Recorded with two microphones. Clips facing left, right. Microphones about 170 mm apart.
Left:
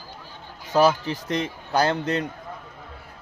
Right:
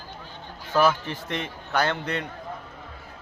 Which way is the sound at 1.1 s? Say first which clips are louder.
Left 5 dB; 40° left (ahead or behind).